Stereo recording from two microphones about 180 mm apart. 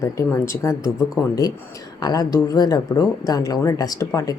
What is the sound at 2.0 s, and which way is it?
Speech, 20° left (ahead or behind).